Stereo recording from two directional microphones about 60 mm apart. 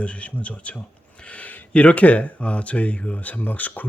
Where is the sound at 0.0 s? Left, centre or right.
Left.